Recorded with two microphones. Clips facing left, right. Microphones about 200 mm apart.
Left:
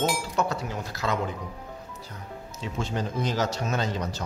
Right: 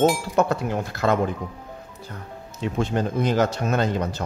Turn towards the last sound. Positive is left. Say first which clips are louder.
# right 6 dB
turn(degrees=-55)  # may be behind; listen again after turning